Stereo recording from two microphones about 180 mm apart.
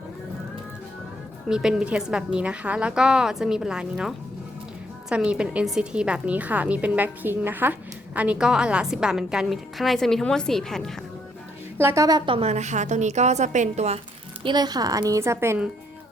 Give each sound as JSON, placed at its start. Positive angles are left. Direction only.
{"t": 1.5, "sound": "a woman's voice", "side_deg": -5}
{"t": 11.8, "sound": "a woman's voice", "side_deg": -15}
{"t": 14.4, "sound": "a woman's voice", "side_deg": -25}